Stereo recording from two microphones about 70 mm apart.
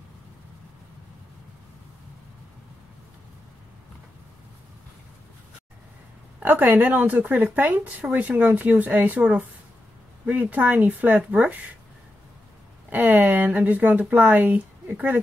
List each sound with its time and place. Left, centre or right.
6.4 s a woman's voice: right
12.9 s a woman's voice: right